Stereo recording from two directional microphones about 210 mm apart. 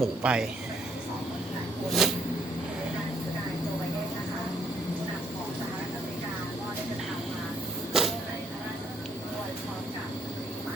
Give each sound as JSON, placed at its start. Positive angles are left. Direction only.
{"t": 0.0, "sound": "speech", "side_deg": -5}
{"t": 1.9, "sound": "speech", "side_deg": 0}
{"t": 7.9, "sound": "vehicle", "side_deg": 0}